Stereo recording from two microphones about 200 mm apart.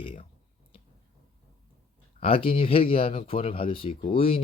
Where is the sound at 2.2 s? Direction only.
30° left (ahead or behind).